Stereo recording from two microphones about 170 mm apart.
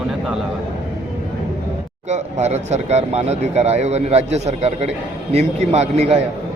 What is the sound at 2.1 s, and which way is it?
Speech, 40° right (ahead or behind).